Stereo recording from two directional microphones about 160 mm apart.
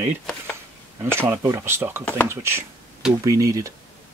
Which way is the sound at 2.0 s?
10° left (ahead or behind).